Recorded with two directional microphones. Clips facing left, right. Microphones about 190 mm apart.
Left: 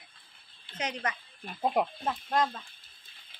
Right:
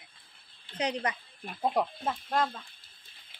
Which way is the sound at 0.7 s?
30° right (ahead or behind).